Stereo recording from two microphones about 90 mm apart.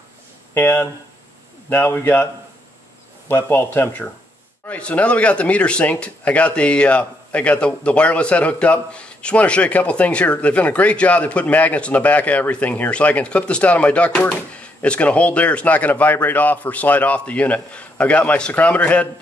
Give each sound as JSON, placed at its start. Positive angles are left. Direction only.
{"t": 0.6, "sound": "speech", "side_deg": 25}
{"t": 3.3, "sound": "a man's voice", "side_deg": 20}